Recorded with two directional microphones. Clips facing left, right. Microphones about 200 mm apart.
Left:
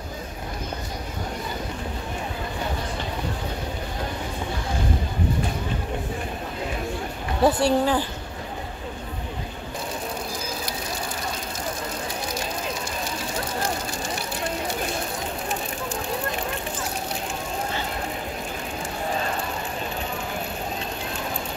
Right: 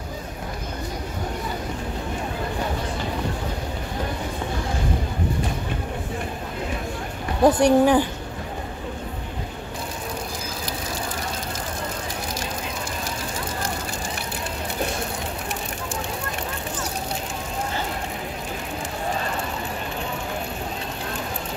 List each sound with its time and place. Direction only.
7.4 s speech: 20° right (ahead or behind)